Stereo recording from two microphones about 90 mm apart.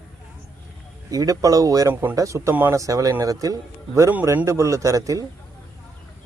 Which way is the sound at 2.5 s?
25° right (ahead or behind).